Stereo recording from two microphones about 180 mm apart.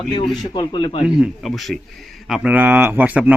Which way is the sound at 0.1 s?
25° left (ahead or behind).